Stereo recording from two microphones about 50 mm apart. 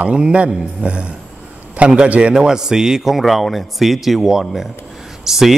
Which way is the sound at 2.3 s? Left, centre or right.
Centre.